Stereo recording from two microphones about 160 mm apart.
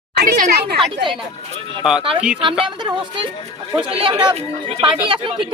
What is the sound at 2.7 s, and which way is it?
A woman's voice, 30° right (ahead or behind).